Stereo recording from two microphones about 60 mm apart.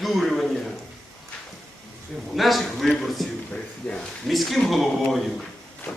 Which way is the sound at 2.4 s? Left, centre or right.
Centre.